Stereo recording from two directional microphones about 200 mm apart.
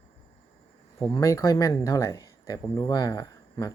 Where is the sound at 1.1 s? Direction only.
15° left (ahead or behind).